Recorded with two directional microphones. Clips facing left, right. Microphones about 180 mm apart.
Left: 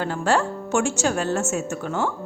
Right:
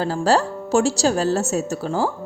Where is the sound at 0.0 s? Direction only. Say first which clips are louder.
Right 3 dB; 35° right (ahead or behind).